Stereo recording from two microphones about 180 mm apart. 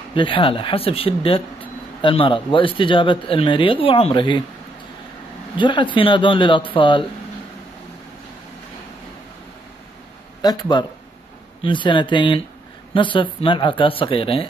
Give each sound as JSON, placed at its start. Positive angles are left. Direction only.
{"t": 0.1, "sound": "speech", "side_deg": 30}
{"t": 5.6, "sound": "speech", "side_deg": 25}
{"t": 10.4, "sound": "speech", "side_deg": 25}